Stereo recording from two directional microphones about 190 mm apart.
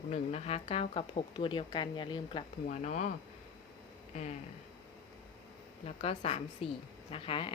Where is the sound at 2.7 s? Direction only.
40° left (ahead or behind).